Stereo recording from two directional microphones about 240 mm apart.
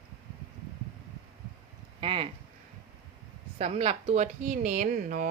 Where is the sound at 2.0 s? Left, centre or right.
Right.